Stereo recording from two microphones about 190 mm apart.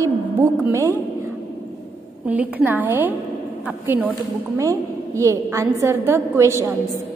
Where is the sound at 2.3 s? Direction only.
10° right (ahead or behind).